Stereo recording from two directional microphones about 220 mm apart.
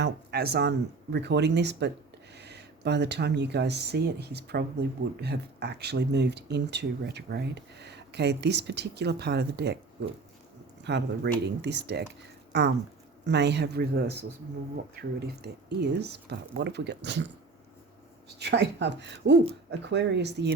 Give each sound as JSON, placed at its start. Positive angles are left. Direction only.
{"t": 0.0, "sound": "speech", "side_deg": -45}
{"t": 10.8, "sound": "speech", "side_deg": -50}
{"t": 15.3, "sound": "speech", "side_deg": -50}
{"t": 18.3, "sound": "speech", "side_deg": -50}